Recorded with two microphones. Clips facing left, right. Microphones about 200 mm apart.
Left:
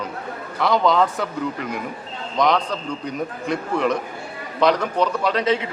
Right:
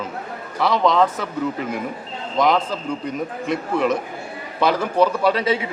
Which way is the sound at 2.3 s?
5° right (ahead or behind).